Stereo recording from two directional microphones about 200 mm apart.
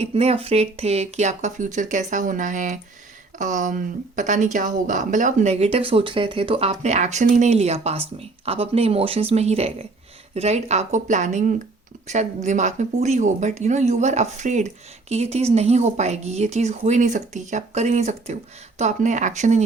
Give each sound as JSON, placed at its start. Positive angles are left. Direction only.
{"t": 0.0, "sound": "a woman's voice", "side_deg": -30}